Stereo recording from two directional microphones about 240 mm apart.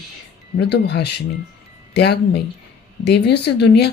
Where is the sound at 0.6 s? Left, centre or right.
Left.